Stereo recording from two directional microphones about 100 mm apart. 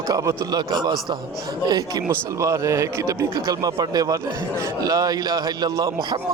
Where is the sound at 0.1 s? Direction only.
40° right (ahead or behind).